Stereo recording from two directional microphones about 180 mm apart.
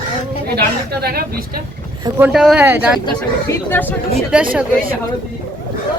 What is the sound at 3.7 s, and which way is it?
Speech, 10° left (ahead or behind).